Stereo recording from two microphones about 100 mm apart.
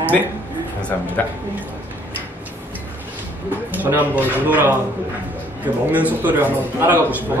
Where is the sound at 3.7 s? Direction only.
20° right (ahead or behind).